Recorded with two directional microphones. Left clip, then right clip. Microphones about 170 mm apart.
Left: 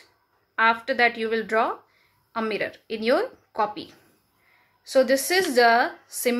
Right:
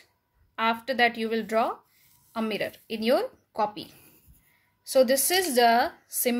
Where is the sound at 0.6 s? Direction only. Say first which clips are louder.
Left 4 dB; 30° right (ahead or behind).